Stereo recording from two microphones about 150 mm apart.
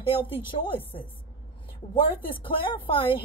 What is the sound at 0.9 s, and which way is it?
Speech, 35° left (ahead or behind).